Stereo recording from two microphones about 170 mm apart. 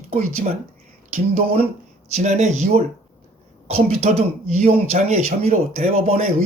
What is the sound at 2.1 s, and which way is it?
Speech, 45° right (ahead or behind).